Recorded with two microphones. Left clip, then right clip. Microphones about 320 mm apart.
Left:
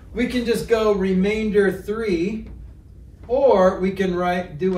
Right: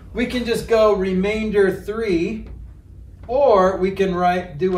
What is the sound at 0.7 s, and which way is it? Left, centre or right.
Speech, centre.